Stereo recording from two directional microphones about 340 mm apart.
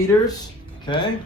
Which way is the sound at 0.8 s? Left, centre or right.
Centre.